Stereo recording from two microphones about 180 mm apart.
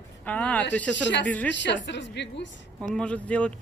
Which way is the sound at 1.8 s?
80° left.